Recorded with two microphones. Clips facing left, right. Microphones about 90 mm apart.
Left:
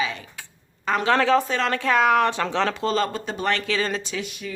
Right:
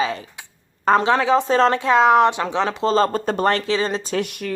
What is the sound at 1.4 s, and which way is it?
A woman's voice, 30° right (ahead or behind).